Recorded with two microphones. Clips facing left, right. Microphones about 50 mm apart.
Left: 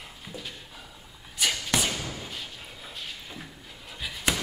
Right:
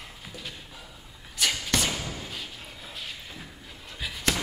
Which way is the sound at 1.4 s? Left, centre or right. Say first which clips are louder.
Even; centre.